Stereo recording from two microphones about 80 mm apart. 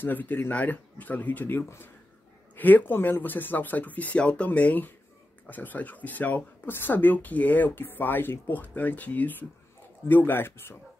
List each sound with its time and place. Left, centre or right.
0.0 s speech: left